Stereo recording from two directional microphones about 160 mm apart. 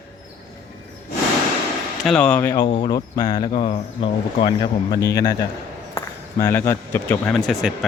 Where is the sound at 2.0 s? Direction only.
5° left (ahead or behind).